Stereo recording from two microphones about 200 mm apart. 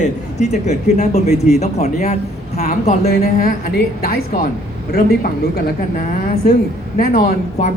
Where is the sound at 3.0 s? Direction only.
50° left (ahead or behind).